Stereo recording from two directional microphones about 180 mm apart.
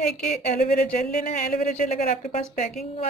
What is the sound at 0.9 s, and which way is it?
Speech, 50° left (ahead or behind).